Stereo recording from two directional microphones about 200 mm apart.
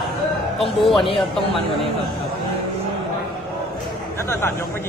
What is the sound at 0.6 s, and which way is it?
Speech, centre (ahead or behind).